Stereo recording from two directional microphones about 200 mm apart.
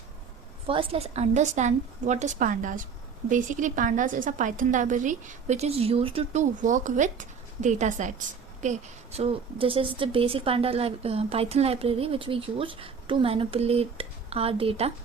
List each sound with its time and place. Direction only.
0.7 s a woman's voice: 30° right (ahead or behind)